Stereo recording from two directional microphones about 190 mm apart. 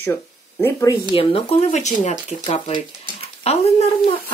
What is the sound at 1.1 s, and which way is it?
Speech, 35° left (ahead or behind).